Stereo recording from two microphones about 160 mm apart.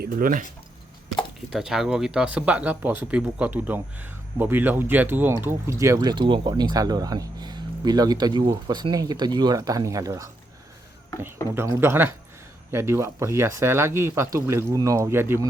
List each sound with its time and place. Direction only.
0.0 s speech: 60° right (ahead or behind)
1.5 s speech: 5° right (ahead or behind); by 10.2 s 20° right (ahead or behind)
11.5 s speech: 15° right (ahead or behind)